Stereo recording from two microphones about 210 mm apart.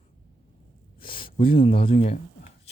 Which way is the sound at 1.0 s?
25° left (ahead or behind).